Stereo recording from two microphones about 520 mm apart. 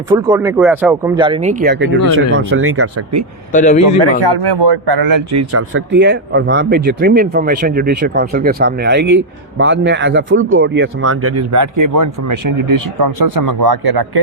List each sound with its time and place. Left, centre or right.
0.1 s speech: centre; by 3.2 s right
3.5 s a man's voice: centre
4.0 s speech: right